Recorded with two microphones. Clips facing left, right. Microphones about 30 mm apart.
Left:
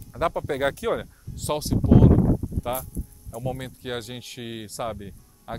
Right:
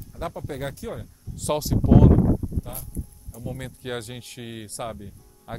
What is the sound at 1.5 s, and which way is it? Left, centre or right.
Speech, centre.